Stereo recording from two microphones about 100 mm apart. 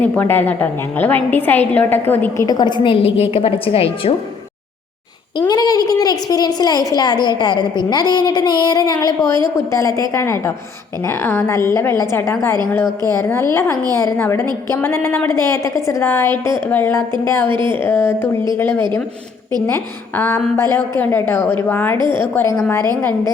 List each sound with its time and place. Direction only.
0.0 s a woman's voice: 20° left (ahead or behind)
2.5 s a woman's voice: 45° left (ahead or behind); by 4.1 s 70° left (ahead or behind)
5.4 s a woman's voice: 40° left (ahead or behind); by 21.9 s 20° left (ahead or behind)
21.9 s a woman's voice: 50° right (ahead or behind)
22.2 s a woman's voice: 25° left (ahead or behind)